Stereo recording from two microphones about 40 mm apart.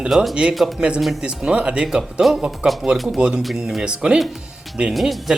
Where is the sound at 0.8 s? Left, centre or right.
Right.